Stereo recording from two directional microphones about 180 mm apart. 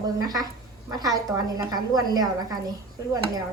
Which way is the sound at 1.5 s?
20° right (ahead or behind).